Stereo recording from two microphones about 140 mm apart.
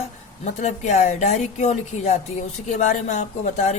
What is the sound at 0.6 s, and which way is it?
A woman's voice, 55° left (ahead or behind).